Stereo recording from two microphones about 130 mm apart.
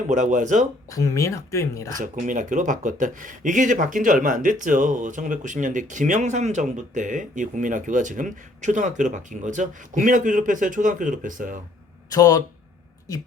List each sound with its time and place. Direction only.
0.1 s speech: 70° right (ahead or behind)
0.9 s speech: 25° left (ahead or behind)
2.0 s speech: 85° right
12.1 s speech: 30° left (ahead or behind)